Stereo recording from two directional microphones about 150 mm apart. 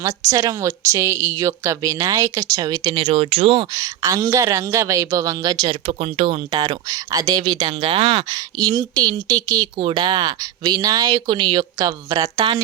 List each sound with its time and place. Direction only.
0.0 s speech: 20° right (ahead or behind)
2.9 s speech: 40° right (ahead or behind)
3.8 s speech: 25° right (ahead or behind)
5.9 s speech: 40° right (ahead or behind)
6.5 s speech: 25° right (ahead or behind)
8.3 s speech: 25° right (ahead or behind)